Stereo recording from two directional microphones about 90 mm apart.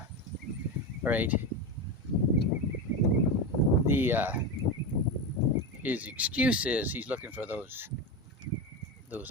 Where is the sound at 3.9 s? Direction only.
25° right (ahead or behind).